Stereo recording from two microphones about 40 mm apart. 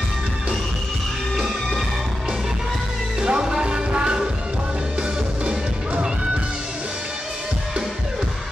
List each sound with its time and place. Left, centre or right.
3.2 s music: right
5.4 s music: right